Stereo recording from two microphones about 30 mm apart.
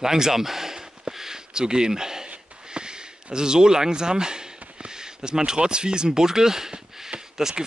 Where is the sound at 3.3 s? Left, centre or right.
Right.